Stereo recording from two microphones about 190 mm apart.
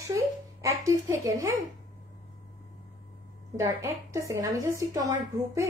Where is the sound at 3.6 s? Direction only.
20° right (ahead or behind).